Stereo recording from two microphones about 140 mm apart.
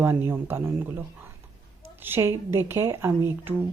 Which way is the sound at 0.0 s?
15° right (ahead or behind).